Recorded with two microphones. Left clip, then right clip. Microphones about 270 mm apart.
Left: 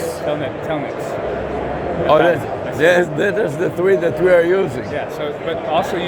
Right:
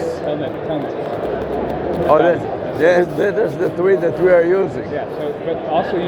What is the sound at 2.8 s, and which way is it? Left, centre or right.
Speech, left.